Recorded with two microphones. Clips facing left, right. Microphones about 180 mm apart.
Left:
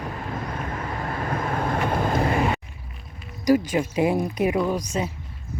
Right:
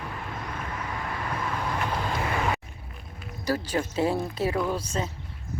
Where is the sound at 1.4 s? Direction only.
50° left (ahead or behind).